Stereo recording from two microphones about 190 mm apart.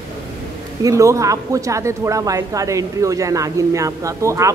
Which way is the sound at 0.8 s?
15° right (ahead or behind).